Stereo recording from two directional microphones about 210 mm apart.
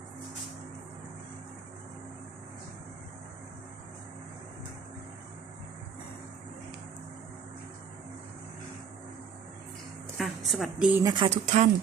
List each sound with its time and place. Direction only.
10.2 s a sound: centre (ahead or behind)
11.0 s speech: 20° right (ahead or behind)
11.4 s speech: 35° right (ahead or behind)